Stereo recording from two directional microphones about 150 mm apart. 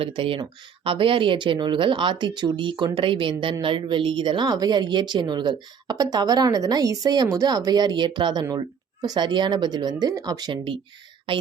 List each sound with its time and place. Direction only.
0.0 s speech: 40° right (ahead or behind)